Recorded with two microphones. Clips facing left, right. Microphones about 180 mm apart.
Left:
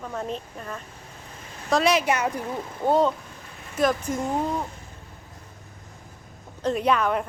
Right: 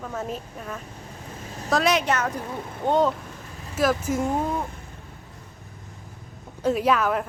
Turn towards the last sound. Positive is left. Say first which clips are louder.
# right 1 dB
turn(degrees=0)  # may be behind; listen again after turning